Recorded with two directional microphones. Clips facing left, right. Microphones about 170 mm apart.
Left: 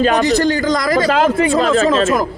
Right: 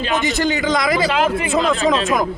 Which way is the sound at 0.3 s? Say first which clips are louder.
Left 3 dB; 5° right (ahead or behind).